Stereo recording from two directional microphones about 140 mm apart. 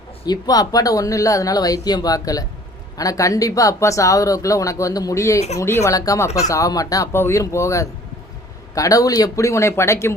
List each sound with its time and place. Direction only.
0.3 s speech: 25° left (ahead or behind)